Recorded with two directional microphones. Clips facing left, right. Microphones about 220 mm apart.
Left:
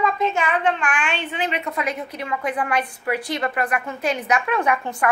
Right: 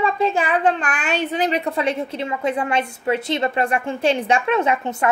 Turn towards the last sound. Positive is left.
turn(degrees=-25)  # may be behind; listen again after turning